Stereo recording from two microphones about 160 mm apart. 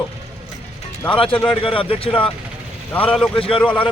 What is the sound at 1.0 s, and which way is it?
Speech, 35° left (ahead or behind).